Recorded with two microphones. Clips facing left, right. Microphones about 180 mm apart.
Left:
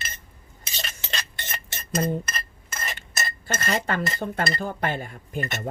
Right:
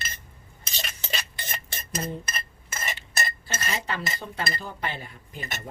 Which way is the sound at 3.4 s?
50° left (ahead or behind).